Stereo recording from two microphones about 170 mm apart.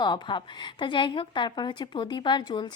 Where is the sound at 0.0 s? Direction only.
25° left (ahead or behind).